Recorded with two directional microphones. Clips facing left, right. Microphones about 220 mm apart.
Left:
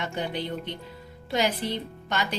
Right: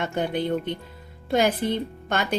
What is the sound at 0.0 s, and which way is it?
Speech, 50° right (ahead or behind).